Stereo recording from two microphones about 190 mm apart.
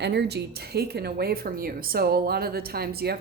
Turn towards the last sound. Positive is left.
turn(degrees=-55)  # may be behind; listen again after turning